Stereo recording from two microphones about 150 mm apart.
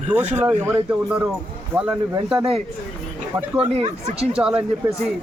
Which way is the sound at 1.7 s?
5° right (ahead or behind).